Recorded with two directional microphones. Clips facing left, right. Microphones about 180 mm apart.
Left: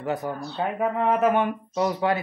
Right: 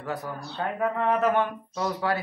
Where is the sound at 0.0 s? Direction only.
20° left (ahead or behind).